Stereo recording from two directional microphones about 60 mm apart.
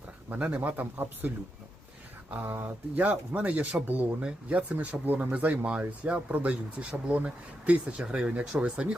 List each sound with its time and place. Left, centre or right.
0.3 s speech: right
2.3 s speech: right; by 9.0 s centre